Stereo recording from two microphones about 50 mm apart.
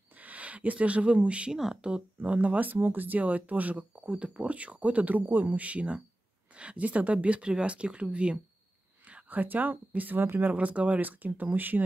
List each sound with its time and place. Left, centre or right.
0.1 s a sound: right
1.5 s speech: centre
1.9 s speech: right
10.5 s speech: right